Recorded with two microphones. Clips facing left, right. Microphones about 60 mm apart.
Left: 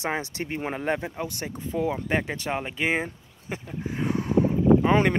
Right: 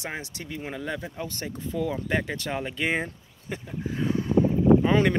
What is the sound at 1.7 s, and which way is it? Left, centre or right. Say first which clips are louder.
Speech: left 2 dB; left.